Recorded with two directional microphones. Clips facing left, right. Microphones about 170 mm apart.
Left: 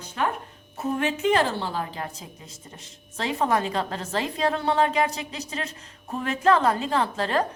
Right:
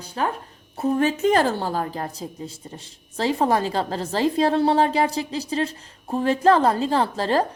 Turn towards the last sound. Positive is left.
turn(degrees=-35)  # may be behind; listen again after turning